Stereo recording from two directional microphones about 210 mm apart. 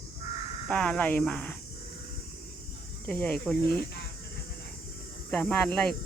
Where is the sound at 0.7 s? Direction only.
5° left (ahead or behind).